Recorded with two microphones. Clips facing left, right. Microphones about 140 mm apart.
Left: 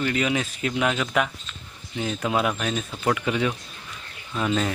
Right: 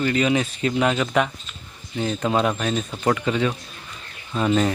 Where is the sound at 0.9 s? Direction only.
10° right (ahead or behind).